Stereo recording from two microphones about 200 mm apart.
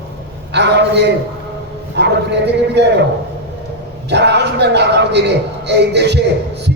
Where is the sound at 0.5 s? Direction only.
60° right (ahead or behind).